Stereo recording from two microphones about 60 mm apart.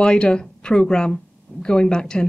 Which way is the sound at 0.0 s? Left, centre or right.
Centre.